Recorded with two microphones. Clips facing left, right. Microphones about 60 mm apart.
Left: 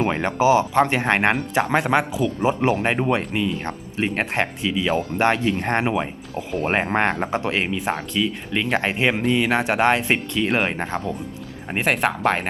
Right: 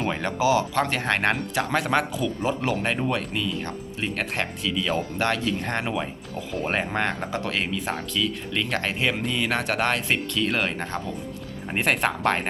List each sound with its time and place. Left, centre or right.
0.0 s speech: left
2.4 s speech: left
6.3 s speech: centre
6.7 s speech: left
11.7 s speech: centre